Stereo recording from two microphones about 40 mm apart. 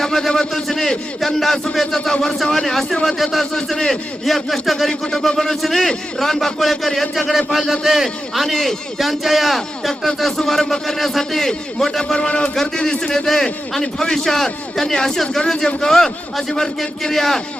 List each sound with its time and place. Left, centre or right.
0.0 s a man's voice: centre
4.9 s a man's voice: centre
12.1 s a man's voice: left; by 17.4 s centre